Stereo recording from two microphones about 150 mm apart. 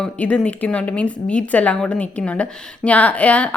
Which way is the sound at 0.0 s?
10° left (ahead or behind).